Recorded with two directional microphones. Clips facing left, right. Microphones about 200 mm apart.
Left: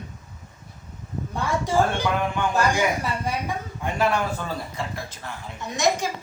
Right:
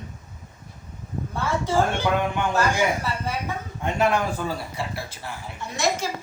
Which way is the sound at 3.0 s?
15° left (ahead or behind).